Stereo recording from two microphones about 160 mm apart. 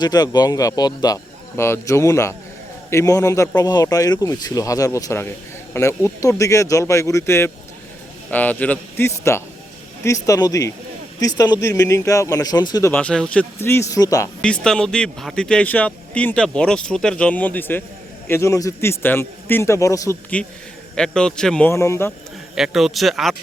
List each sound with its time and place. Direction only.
0.0 s a man's voice: 25° left (ahead or behind)
12.9 s a man's voice: 5° left (ahead or behind)
14.4 s a man's voice: 5° left (ahead or behind)
20.9 s speech: 5° left (ahead or behind)
21.7 s a man's voice: 15° left (ahead or behind)
22.5 s speech: centre (ahead or behind)